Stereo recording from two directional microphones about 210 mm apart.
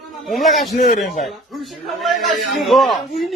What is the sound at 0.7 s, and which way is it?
Speech, 45° left (ahead or behind).